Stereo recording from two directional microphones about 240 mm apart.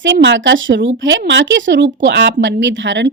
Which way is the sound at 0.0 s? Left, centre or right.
Right.